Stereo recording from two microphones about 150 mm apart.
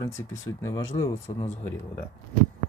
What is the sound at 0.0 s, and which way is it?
Speech, 20° left (ahead or behind).